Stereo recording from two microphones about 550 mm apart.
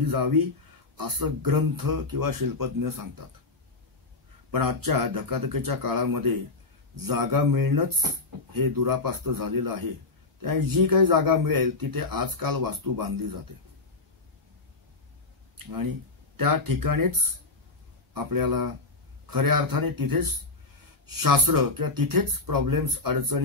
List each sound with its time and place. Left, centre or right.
0.0 s speech: right
4.5 s speech: right
15.5 s speech: right